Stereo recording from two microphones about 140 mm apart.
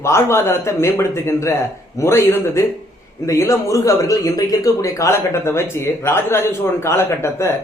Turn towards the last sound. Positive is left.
turn(degrees=20)  # may be behind; listen again after turning